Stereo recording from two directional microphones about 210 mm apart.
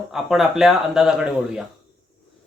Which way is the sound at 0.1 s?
Centre (ahead or behind).